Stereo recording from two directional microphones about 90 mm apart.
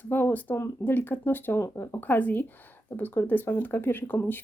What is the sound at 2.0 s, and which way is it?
Speech, 20° left (ahead or behind).